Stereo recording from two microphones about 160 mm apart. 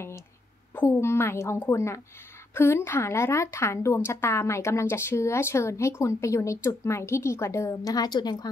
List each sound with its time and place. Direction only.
0.7 s a woman's voice: 15° left (ahead or behind)